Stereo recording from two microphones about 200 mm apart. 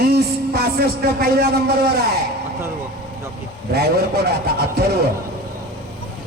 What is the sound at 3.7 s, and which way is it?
A man's voice, 50° right (ahead or behind).